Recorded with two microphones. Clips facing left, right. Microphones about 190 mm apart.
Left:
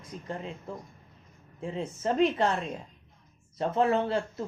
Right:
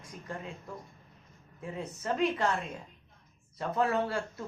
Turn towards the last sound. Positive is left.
turn(degrees=25)  # may be behind; listen again after turning